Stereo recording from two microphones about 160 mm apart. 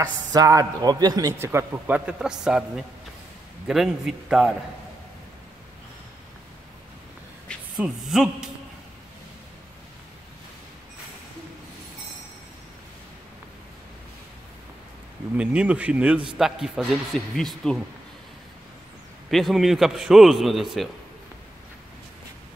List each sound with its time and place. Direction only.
0.3 s a man's voice: 20° right (ahead or behind); by 4.5 s centre (ahead or behind)
7.4 s speech: centre (ahead or behind)
15.3 s a man's voice: 5° right (ahead or behind)
19.3 s a man's voice: centre (ahead or behind)